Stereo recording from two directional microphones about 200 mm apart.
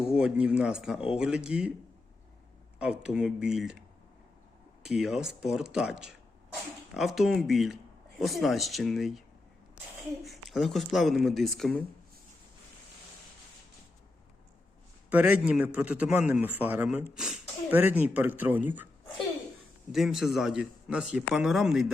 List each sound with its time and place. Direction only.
0.2 s speech: 5° right (ahead or behind)
2.7 s speech: 5° right (ahead or behind)
10.2 s speech: centre (ahead or behind)
15.1 s a man's voice: 5° right (ahead or behind)
19.9 s speech: centre (ahead or behind)